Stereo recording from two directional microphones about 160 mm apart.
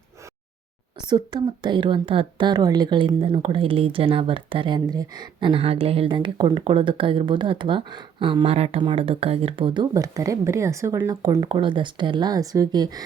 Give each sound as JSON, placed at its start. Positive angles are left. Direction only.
{"t": 1.0, "sound": "a woman's voice", "side_deg": -25}